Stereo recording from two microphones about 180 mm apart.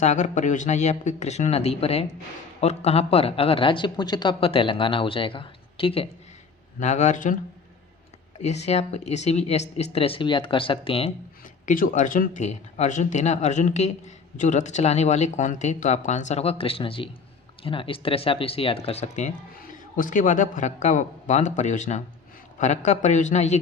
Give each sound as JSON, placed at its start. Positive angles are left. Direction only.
{"t": 0.0, "sound": "speech", "side_deg": 40}
{"t": 8.4, "sound": "speech", "side_deg": 35}
{"t": 11.6, "sound": "speech", "side_deg": 50}